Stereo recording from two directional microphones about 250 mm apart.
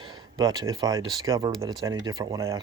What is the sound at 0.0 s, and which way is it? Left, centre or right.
Speech, centre.